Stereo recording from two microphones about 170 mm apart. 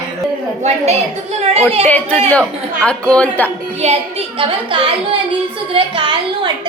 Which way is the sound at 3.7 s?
40° right (ahead or behind).